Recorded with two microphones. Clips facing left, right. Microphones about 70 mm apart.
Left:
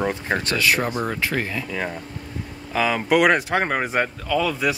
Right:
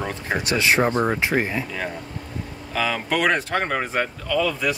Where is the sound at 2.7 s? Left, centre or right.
Centre.